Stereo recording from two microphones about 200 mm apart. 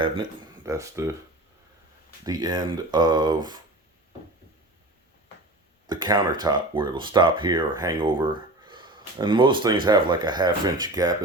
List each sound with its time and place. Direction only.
0.0 s speech: 20° right (ahead or behind)
2.2 s speech: 20° right (ahead or behind)
5.9 s speech: 20° right (ahead or behind)